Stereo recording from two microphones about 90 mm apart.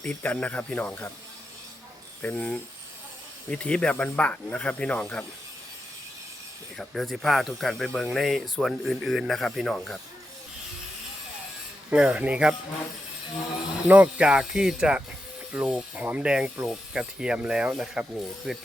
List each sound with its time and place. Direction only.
0.0 s speech: 15° left (ahead or behind)
2.2 s speech: 10° left (ahead or behind)
6.7 s speech: 5° left (ahead or behind)
11.9 s speech: 15° right (ahead or behind)
13.8 s speech: 15° right (ahead or behind)